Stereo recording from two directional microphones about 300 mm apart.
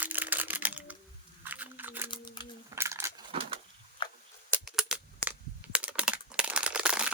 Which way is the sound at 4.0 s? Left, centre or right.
Centre.